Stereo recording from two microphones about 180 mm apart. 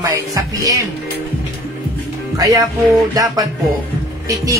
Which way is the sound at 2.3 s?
20° right (ahead or behind).